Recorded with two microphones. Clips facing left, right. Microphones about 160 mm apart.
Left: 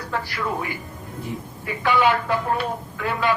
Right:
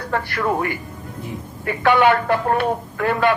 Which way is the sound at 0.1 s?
60° right (ahead or behind).